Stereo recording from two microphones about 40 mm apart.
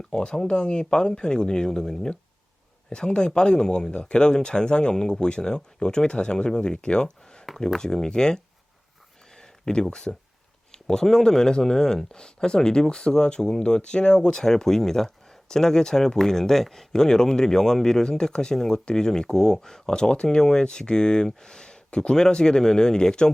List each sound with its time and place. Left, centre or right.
0.1 s speech: centre
7.4 s speech: centre
9.3 s a sound: centre
10.7 s speech: centre